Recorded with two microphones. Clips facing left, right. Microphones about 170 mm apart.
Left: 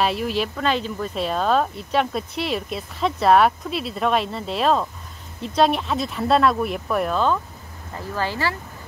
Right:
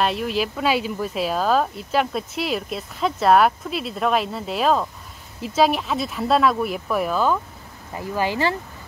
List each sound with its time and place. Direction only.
0.0 s speech: centre (ahead or behind); by 8.5 s 20° right (ahead or behind)